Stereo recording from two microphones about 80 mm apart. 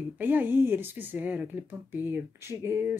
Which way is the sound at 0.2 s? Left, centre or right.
Right.